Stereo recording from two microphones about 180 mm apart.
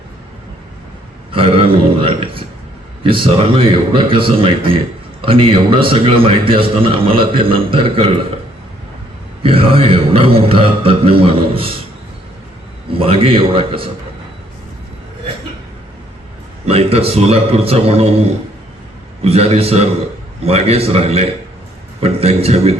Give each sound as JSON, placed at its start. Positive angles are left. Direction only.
{"t": 1.3, "sound": "a man's voice", "side_deg": -30}
{"t": 9.4, "sound": "a man's voice", "side_deg": -30}
{"t": 12.9, "sound": "a man's voice", "side_deg": -30}
{"t": 16.6, "sound": "a man's voice", "side_deg": -35}